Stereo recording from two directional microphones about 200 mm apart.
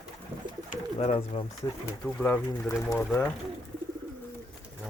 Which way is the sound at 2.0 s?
10° left (ahead or behind).